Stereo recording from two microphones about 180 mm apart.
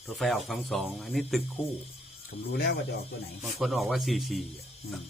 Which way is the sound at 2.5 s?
60° left (ahead or behind).